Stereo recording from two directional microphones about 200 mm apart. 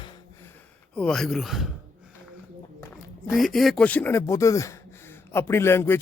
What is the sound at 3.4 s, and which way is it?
Speech, centre (ahead or behind).